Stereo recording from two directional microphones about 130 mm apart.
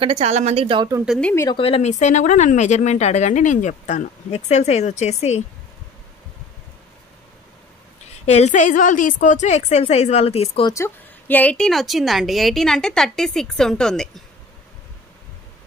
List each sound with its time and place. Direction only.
0.0 s speech: 55° right (ahead or behind)
1.5 s speech: 45° left (ahead or behind)
8.3 s speech: 60° left (ahead or behind)
10.7 s a woman's voice: 20° left (ahead or behind)